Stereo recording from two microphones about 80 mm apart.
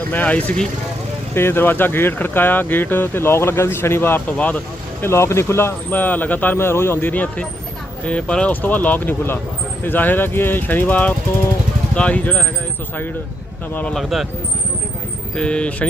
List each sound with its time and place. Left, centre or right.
0.1 s speech: centre
1.3 s speech: left
4.4 s speech: centre
5.0 s speech: left; by 12.5 s centre
13.9 s speech: centre
15.4 s speech: centre